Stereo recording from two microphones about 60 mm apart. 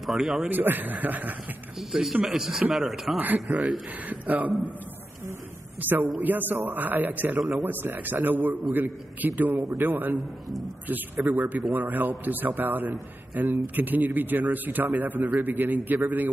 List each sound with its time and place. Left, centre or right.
0.0 s a man's voice: centre
0.5 s a man's voice: right
1.8 s a man's voice: centre
3.5 s a man's voice: right
5.8 s a man's voice: right
11.2 s a man's voice: right